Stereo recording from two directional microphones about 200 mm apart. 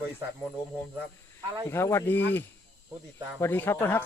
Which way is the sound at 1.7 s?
15° left (ahead or behind).